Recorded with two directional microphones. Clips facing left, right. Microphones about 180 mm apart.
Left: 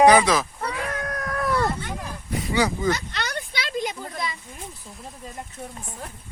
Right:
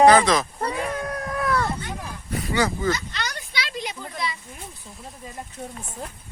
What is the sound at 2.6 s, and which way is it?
Speech, 15° left (ahead or behind).